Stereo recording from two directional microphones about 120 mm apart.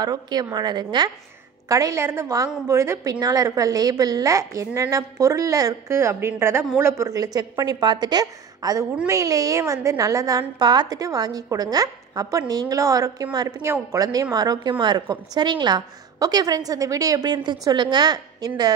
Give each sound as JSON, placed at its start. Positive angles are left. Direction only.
{"t": 0.0, "sound": "a woman's voice", "side_deg": -35}